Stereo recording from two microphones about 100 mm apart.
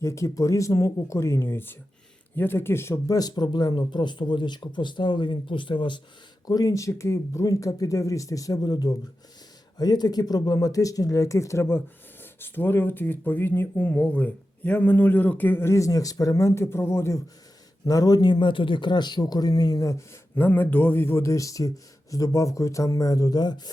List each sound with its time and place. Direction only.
0.0 s speech: 30° left (ahead or behind); by 6.0 s 55° left (ahead or behind)
6.5 s speech: 40° left (ahead or behind)
17.8 s speech: 35° left (ahead or behind)
20.3 s speech: 20° left (ahead or behind); by 23.7 s 45° left (ahead or behind)